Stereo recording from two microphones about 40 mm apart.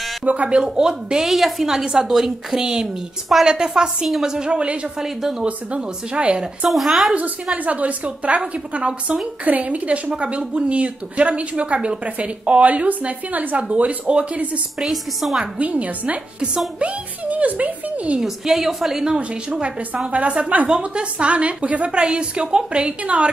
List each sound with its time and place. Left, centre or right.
0.2 s speech: right
0.5 s a woman's voice: centre
6.7 s speech: centre
7.5 s speech: right
9.4 s speech: right
13.6 s speech: right
14.8 s a woman's voice: centre
15.6 s speech: right
18.2 s a woman's voice: centre
19.1 s a woman's voice: right
20.1 s speech: right
20.6 s a woman's voice: right